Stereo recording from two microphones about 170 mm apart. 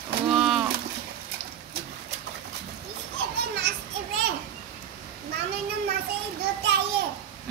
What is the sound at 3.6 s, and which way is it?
Children playing, 80° right.